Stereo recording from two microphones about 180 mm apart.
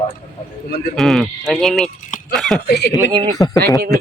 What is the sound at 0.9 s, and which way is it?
Speech, centre (ahead or behind).